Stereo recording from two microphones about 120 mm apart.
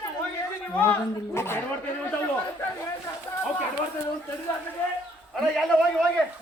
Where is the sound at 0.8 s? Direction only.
20° left (ahead or behind).